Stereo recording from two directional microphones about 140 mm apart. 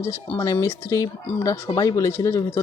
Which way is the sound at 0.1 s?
20° left (ahead or behind).